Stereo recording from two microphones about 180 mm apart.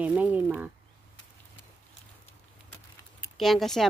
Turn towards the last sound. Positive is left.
turn(degrees=0)  # may be behind; listen again after turning